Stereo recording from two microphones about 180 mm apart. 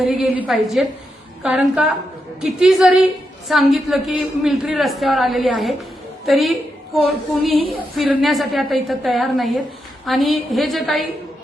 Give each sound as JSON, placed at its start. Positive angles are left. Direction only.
{"t": 0.0, "sound": "a man's voice", "side_deg": 0}